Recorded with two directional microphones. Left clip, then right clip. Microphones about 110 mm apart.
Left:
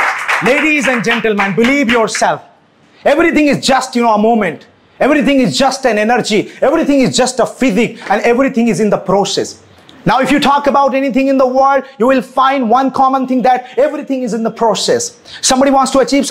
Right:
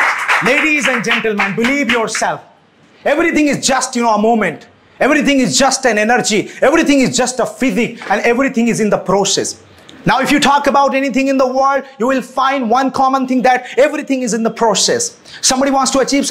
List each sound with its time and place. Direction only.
0.7 s a man's voice: 45° left (ahead or behind)
4.0 s speech: 25° left (ahead or behind)
6.6 s speech: 5° left (ahead or behind)
7.1 s speech: 40° left (ahead or behind)
11.5 s speech: 35° left (ahead or behind); by 14.8 s 15° left (ahead or behind)
14.8 s a man's voice: 30° left (ahead or behind)